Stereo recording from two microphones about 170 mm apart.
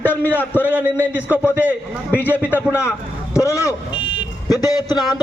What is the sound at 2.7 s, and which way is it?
A man's voice, 15° left (ahead or behind).